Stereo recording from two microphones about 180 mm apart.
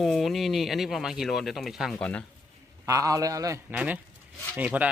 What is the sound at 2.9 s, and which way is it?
Speech, 20° right (ahead or behind).